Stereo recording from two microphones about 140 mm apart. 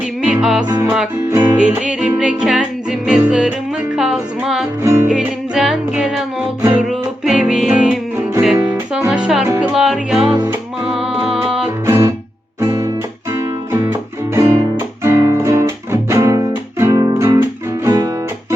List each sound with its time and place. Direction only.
0.2 s music: 5° right (ahead or behind)
0.7 s music: 20° right (ahead or behind)
1.5 s music: 5° right (ahead or behind)
4.8 s music: 20° right (ahead or behind)
5.0 s music: 5° right (ahead or behind)
6.6 s music: 15° right (ahead or behind)
6.8 s music: 5° right (ahead or behind)
8.5 s music: 20° right (ahead or behind)
9.0 s music: 5° right (ahead or behind)
11.9 s music: 20° right (ahead or behind)